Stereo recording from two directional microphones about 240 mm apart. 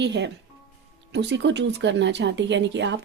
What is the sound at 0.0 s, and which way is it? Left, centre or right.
Speech, right.